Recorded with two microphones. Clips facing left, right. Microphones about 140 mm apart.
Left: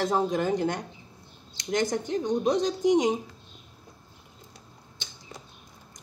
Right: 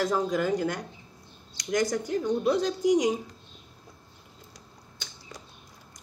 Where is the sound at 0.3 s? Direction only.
25° left (ahead or behind).